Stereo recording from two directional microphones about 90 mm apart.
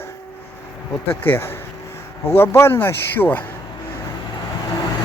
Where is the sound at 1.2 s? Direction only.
25° left (ahead or behind).